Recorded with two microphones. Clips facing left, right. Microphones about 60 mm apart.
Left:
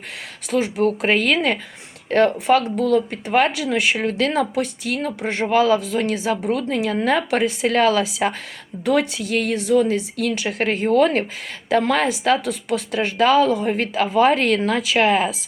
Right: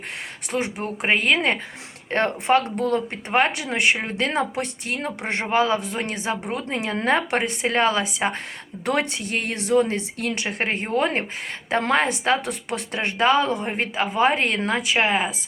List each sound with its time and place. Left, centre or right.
0.5 s a woman's voice: right
11.7 s speech: right
13.7 s a woman's voice: right